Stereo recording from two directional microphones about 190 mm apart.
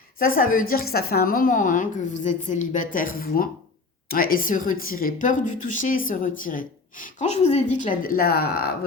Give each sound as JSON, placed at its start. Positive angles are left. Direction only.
{"t": 0.2, "sound": "a woman's voice", "side_deg": 50}